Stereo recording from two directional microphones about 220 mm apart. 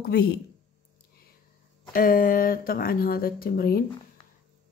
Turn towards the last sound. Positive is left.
turn(degrees=45)  # may be behind; listen again after turning